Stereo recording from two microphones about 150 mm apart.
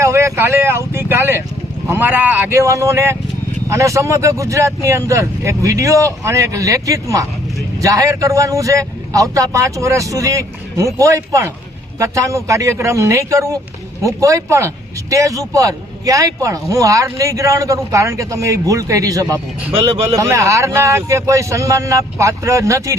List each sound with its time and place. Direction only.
0.0 s speech: 20° right (ahead or behind)